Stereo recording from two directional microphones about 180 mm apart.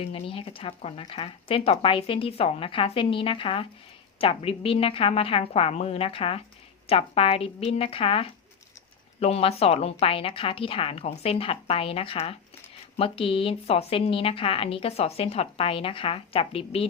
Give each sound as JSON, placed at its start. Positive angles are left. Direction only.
{"t": 0.0, "sound": "a woman's voice", "side_deg": 30}